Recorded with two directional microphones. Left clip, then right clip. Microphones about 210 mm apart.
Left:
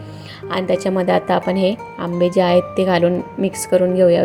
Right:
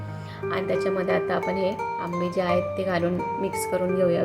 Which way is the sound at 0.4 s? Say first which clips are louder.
Left 6 dB; 30° left (ahead or behind).